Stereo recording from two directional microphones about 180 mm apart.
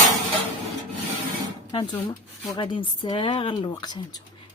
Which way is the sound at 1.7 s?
25° left (ahead or behind).